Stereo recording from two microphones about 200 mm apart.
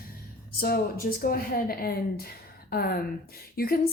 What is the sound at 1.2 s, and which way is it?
A woman's voice, 45° left (ahead or behind).